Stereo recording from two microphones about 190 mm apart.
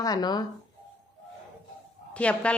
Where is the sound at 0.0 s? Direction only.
20° left (ahead or behind).